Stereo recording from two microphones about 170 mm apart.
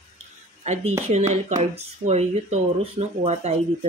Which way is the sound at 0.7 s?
40° right (ahead or behind).